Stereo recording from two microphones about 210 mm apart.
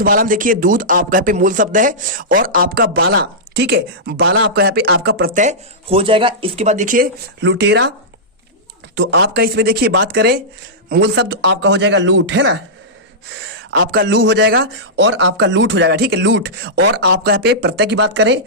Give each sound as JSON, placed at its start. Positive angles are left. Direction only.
{"t": 0.0, "sound": "speech", "side_deg": -40}
{"t": 7.4, "sound": "a man's voice", "side_deg": -55}
{"t": 9.0, "sound": "a man's voice", "side_deg": -55}
{"t": 13.7, "sound": "a man's voice", "side_deg": -55}